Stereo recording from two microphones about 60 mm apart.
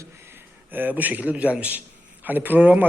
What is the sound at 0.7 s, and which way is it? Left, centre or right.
A man's voice, right.